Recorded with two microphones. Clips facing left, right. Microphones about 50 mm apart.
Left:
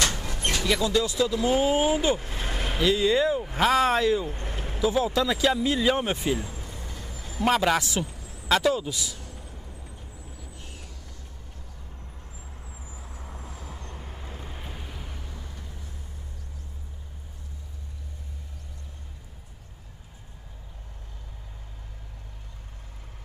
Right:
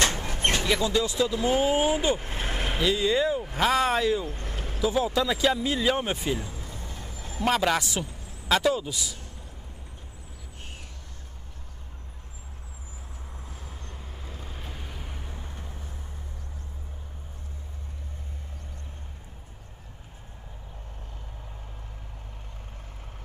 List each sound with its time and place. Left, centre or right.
0.0 s vehicle: right
0.7 s speech: right
2.1 s vehicle: right
2.7 s speech: centre
4.3 s vehicle: left
4.6 s vehicle: centre
4.9 s speech: centre
6.4 s vehicle: left
6.8 s vehicle: right
7.4 s speech: centre
13.2 s vehicle: left
14.5 s vehicle: centre
14.9 s vehicle: centre
15.1 s vehicle: right